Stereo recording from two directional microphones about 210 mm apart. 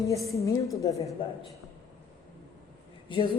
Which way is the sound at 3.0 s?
25° left (ahead or behind).